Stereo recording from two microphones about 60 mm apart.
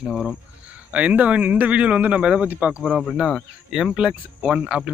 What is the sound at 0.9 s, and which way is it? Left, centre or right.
Speech, right.